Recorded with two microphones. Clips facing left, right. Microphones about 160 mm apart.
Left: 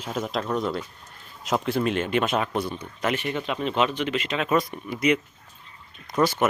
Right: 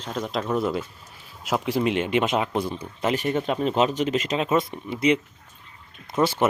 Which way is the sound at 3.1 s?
40° right (ahead or behind).